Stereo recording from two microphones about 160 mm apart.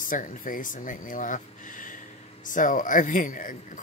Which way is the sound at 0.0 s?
55° left (ahead or behind).